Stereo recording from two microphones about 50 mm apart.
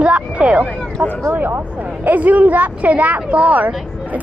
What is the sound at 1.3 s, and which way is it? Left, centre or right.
Speech, right.